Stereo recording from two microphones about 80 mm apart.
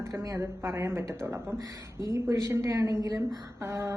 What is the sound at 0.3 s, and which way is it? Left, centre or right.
A woman's voice, right.